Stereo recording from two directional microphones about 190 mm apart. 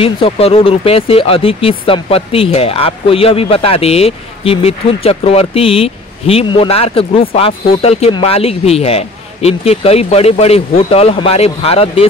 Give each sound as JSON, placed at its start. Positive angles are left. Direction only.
{"t": 0.0, "sound": "speech", "side_deg": 30}